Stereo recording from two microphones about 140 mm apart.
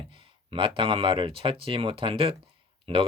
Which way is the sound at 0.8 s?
40° right (ahead or behind).